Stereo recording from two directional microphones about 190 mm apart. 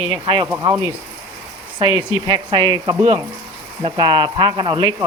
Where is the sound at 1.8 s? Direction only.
25° right (ahead or behind).